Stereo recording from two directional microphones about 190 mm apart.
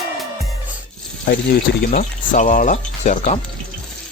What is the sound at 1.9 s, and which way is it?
Speech, 45° left (ahead or behind).